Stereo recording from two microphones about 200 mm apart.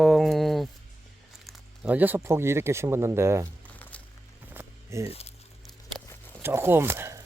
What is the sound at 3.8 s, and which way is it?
Music, 10° left (ahead or behind).